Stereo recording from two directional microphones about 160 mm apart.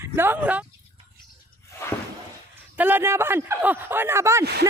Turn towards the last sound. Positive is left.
turn(degrees=-15)  # may be behind; listen again after turning